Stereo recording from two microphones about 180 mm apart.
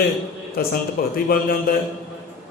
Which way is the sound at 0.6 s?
55° left (ahead or behind).